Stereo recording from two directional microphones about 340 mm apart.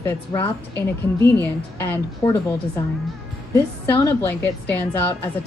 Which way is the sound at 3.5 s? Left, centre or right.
Centre.